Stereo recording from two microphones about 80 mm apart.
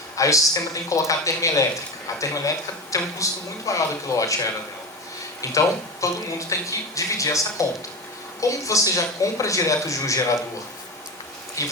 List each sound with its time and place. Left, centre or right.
0.2 s speech: left
5.4 s speech: left
11.6 s speech: left